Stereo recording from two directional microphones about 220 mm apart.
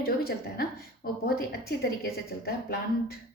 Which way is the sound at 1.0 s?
45° left (ahead or behind).